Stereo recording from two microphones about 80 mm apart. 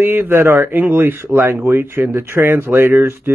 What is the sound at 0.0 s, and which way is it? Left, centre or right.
Speech, right.